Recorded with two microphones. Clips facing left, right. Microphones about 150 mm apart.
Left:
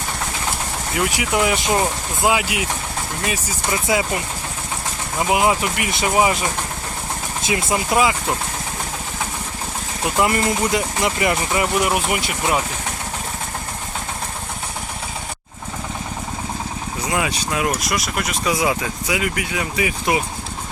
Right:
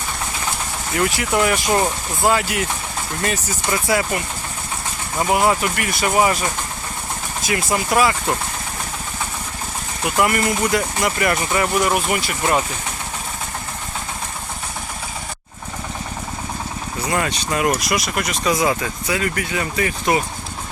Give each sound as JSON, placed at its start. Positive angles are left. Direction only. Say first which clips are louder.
{"t": 1.1, "sound": "speech", "louder": "left 1 dB", "side_deg": 10}
{"t": 5.3, "sound": "speech", "louder": "even", "side_deg": 15}
{"t": 7.4, "sound": "speech", "louder": "even", "side_deg": 20}
{"t": 10.2, "sound": "speech", "louder": "even", "side_deg": 20}
{"t": 17.1, "sound": "speech", "louder": "right 1 dB", "side_deg": 5}